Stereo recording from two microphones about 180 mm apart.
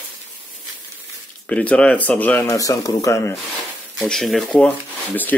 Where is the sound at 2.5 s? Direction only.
20° left (ahead or behind).